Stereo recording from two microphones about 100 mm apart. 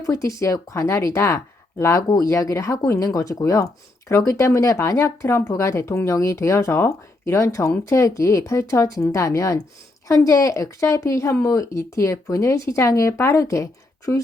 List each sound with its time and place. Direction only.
0.0 s speech: 30° left (ahead or behind)